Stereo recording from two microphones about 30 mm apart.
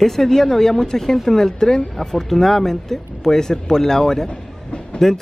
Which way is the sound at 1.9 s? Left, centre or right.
Centre.